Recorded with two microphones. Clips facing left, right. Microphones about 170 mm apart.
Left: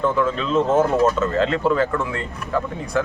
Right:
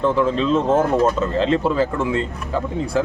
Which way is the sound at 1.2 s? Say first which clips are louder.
Right 1 dB; 25° right (ahead or behind).